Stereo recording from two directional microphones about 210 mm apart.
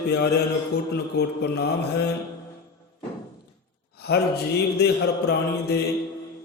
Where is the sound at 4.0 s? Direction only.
50° left (ahead or behind).